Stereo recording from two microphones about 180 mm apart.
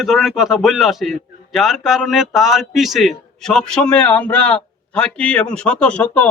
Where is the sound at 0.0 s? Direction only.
Centre (ahead or behind).